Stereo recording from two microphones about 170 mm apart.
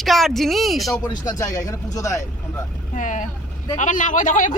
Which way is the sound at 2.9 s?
45° left (ahead or behind).